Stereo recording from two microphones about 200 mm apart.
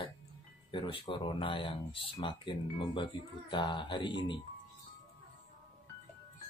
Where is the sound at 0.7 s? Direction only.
25° left (ahead or behind).